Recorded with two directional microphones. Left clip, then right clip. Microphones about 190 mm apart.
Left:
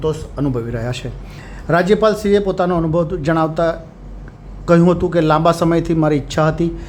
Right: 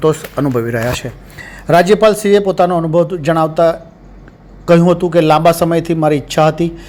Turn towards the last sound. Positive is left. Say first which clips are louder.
# right 5 dB
turn(degrees=-10)  # may be behind; listen again after turning